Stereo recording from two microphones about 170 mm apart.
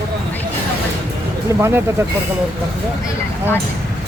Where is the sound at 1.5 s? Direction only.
15° right (ahead or behind).